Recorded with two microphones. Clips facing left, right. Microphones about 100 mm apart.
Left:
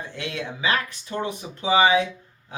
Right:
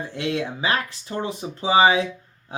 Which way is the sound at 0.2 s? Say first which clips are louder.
Right 4 dB; 35° right (ahead or behind).